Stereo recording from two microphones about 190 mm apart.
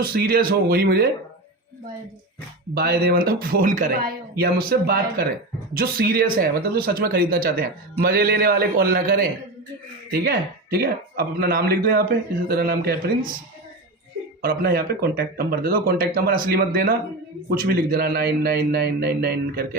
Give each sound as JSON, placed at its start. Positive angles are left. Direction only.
{"t": 0.0, "sound": "speech", "side_deg": -50}
{"t": 2.7, "sound": "speech", "side_deg": -55}
{"t": 14.4, "sound": "speech", "side_deg": -50}